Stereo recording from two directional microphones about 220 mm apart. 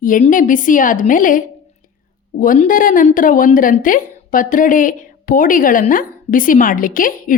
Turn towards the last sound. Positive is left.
turn(degrees=40)  # may be behind; listen again after turning